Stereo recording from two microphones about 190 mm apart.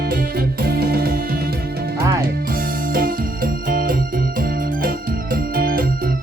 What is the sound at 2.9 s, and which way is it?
Music, 50° right (ahead or behind).